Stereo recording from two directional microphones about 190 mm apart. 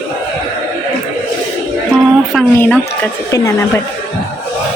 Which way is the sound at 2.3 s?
5° left (ahead or behind).